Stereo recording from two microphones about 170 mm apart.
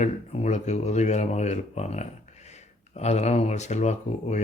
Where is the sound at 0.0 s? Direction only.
40° left (ahead or behind).